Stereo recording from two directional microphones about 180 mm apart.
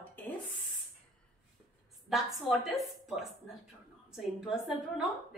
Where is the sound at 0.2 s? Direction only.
10° left (ahead or behind).